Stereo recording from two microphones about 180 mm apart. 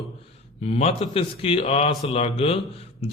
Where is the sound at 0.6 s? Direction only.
35° left (ahead or behind).